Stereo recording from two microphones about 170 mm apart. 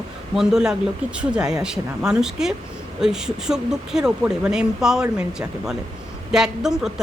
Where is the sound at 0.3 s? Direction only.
5° right (ahead or behind).